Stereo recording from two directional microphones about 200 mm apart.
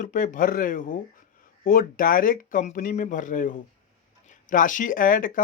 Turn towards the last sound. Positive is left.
turn(degrees=45)  # may be behind; listen again after turning